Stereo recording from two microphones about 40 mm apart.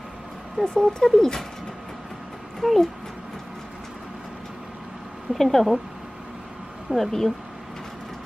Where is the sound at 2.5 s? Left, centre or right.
Centre.